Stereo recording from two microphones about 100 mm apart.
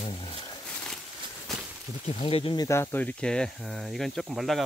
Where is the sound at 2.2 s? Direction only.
75° left (ahead or behind).